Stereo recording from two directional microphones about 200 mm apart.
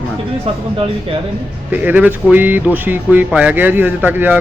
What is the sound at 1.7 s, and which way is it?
Speech, 10° right (ahead or behind).